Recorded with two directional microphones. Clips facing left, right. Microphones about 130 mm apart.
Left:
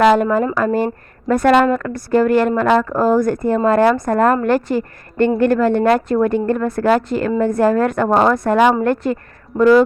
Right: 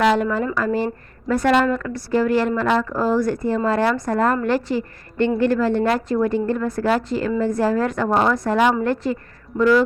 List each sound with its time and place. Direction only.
0.0 s a woman's voice: 50° left (ahead or behind)